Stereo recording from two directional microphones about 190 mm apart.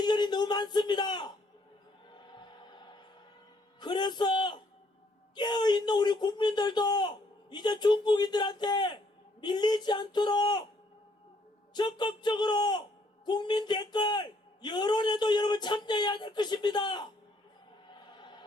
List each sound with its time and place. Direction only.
0.0 s a sound: 20° left (ahead or behind)
3.8 s a man's voice: 25° left (ahead or behind)
11.7 s a man's voice: 25° left (ahead or behind)
18.1 s music: 25° left (ahead or behind)